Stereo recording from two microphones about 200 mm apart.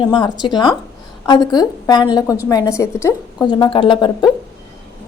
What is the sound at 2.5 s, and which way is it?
A woman's voice, 15° left (ahead or behind).